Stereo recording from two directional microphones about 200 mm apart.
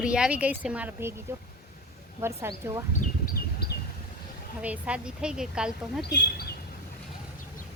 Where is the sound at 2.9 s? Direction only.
45° left (ahead or behind).